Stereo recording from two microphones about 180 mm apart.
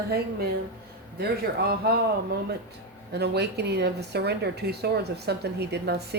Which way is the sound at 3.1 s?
65° right (ahead or behind).